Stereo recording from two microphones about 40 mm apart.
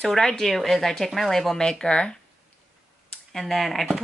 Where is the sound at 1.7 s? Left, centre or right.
Centre.